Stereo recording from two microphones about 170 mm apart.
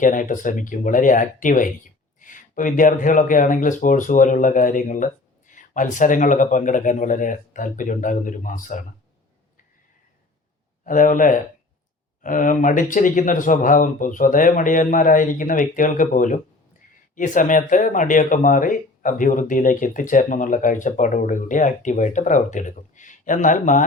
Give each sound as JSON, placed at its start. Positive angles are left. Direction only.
{"t": 0.0, "sound": "speech", "side_deg": 50}
{"t": 10.8, "sound": "speech", "side_deg": 50}